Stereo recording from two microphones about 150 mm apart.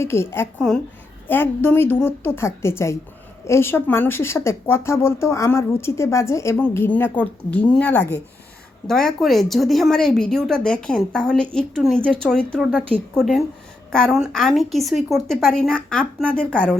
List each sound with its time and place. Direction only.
0.0 s a woman's voice: 15° left (ahead or behind)